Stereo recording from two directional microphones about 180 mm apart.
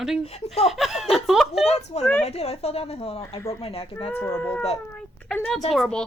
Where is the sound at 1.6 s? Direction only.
35° left (ahead or behind).